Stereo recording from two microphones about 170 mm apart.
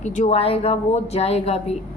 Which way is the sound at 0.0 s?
45° left (ahead or behind).